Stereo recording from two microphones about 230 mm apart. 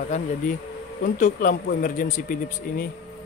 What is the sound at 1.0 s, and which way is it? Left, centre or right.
A man's voice, left.